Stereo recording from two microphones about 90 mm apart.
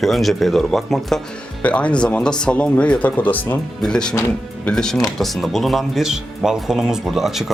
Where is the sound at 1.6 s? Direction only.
15° left (ahead or behind).